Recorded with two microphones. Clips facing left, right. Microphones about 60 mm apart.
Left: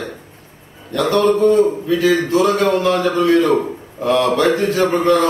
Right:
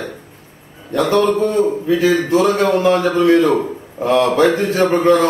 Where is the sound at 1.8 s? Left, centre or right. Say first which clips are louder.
Right 1 dB; right.